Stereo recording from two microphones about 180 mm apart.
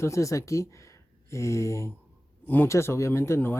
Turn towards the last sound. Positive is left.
turn(degrees=15)  # may be behind; listen again after turning